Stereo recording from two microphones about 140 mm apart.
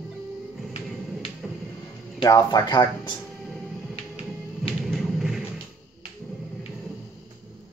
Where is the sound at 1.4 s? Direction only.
5° right (ahead or behind).